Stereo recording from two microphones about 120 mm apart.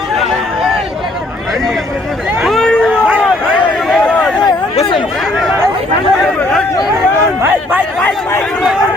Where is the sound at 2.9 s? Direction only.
10° right (ahead or behind).